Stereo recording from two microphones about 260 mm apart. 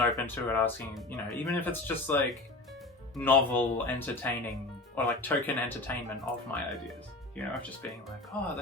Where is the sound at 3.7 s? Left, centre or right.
Centre.